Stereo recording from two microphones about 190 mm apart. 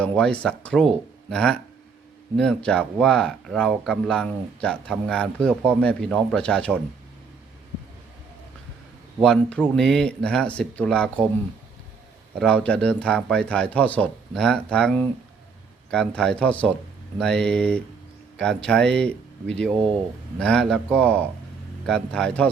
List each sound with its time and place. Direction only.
0.0 s speech: 5° left (ahead or behind)
9.2 s speech: 5° left (ahead or behind)
12.4 s speech: 5° left (ahead or behind)